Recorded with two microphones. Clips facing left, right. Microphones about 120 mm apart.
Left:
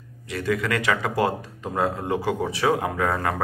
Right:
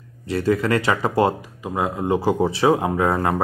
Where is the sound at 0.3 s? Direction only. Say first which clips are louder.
Right 5 dB; 35° right (ahead or behind).